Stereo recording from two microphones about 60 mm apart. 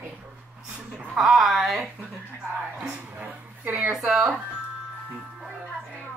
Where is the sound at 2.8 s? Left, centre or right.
Centre.